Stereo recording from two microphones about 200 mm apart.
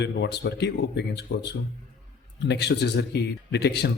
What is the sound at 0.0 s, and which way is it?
Speech, 55° left (ahead or behind).